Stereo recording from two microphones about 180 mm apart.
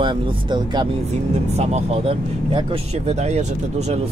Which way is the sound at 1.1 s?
40° right (ahead or behind).